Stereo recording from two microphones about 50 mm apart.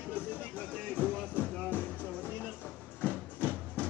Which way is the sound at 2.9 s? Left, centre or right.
Left.